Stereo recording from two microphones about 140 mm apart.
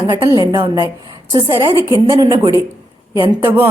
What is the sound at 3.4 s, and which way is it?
Speech, 15° right (ahead or behind).